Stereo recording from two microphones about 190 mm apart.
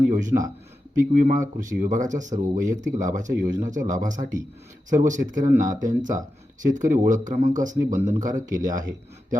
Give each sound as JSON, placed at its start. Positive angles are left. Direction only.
{"t": 0.1, "sound": "speech", "side_deg": -40}